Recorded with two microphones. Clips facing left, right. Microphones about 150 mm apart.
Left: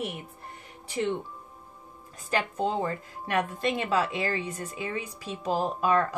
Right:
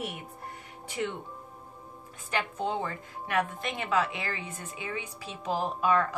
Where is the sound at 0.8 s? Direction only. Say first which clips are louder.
Left 4 dB; 35° left (ahead or behind).